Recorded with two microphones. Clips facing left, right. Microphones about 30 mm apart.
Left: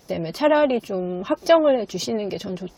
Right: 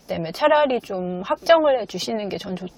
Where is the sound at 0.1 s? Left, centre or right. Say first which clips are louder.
Right 1 dB; centre.